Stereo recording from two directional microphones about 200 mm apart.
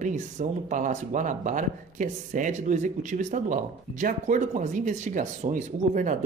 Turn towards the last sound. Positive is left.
turn(degrees=-40)  # may be behind; listen again after turning